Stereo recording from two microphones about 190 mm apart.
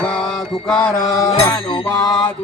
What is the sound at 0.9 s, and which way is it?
Music, 20° left (ahead or behind).